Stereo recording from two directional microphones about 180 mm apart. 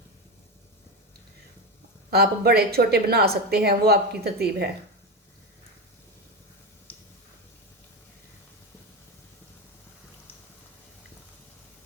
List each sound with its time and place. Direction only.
2.0 s a woman's voice: 60° right (ahead or behind)